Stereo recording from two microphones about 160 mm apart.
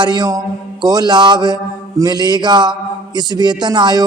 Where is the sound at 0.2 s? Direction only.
25° right (ahead or behind).